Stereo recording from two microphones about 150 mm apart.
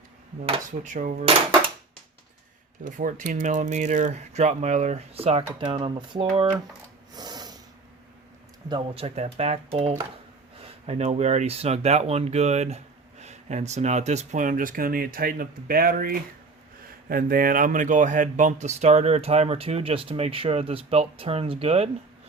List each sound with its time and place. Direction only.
0.9 s dishes: 65° right (ahead or behind)
2.8 s speech: 60° right (ahead or behind); by 6.5 s 35° right (ahead or behind)
7.1 s snort: 25° right (ahead or behind)
8.7 s speech: 40° right (ahead or behind)